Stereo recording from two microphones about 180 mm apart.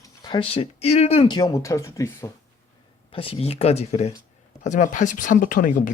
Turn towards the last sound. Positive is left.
turn(degrees=50)  # may be behind; listen again after turning